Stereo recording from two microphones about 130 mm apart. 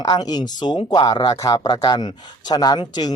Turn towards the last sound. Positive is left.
turn(degrees=35)  # may be behind; listen again after turning